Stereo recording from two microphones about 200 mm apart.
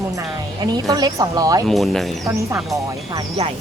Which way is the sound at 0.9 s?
20° right (ahead or behind).